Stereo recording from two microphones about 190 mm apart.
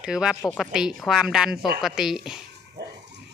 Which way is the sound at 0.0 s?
5° right (ahead or behind).